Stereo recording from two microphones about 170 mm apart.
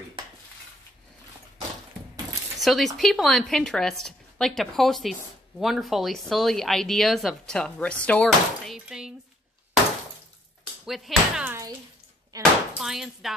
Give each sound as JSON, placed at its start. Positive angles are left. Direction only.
{"t": 2.6, "sound": "speech", "side_deg": 0}
{"t": 10.9, "sound": "speech", "side_deg": -5}
{"t": 12.3, "sound": "speech", "side_deg": -20}
{"t": 12.8, "sound": "speech", "side_deg": 0}